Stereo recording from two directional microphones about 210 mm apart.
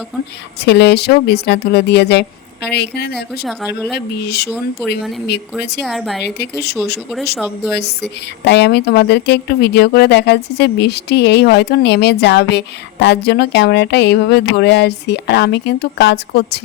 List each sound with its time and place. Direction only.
0.6 s speech: 50° left (ahead or behind)
5.8 s a woman's voice: centre (ahead or behind)
6.2 s speech: 55° left (ahead or behind)
7.3 s a woman's voice: centre (ahead or behind)
7.7 s speech: 50° left (ahead or behind)